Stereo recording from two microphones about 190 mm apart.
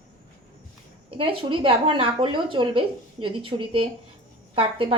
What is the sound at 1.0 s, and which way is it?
A woman's voice, 30° right (ahead or behind).